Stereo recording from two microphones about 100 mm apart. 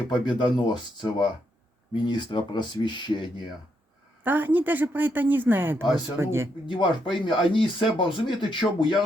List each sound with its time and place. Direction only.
0.1 s speech: 50° left (ahead or behind)
4.2 s speech: 20° right (ahead or behind)
6.7 s speech: 55° left (ahead or behind)